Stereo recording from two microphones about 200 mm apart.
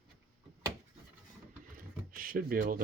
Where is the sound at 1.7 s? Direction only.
45° right (ahead or behind).